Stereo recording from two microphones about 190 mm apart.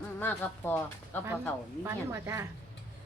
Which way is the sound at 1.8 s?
15° right (ahead or behind).